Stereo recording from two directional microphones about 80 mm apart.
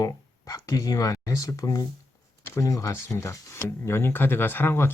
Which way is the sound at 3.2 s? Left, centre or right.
Left.